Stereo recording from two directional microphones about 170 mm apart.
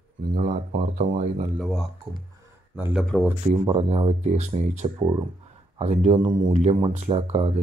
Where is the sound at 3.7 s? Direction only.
35° right (ahead or behind).